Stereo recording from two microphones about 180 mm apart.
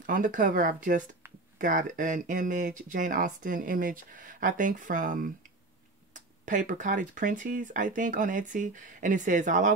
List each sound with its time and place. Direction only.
0.0 s speech: 45° right (ahead or behind)